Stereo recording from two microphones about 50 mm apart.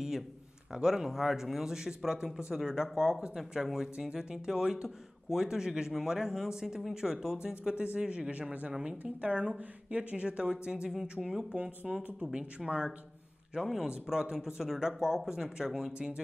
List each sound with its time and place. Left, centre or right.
0.7 s speech: centre
10.9 s speech: centre
12.3 s speech: centre
13.6 s speech: centre